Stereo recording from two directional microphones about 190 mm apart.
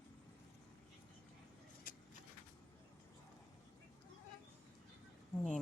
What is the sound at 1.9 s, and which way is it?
Vehicle, 45° left (ahead or behind).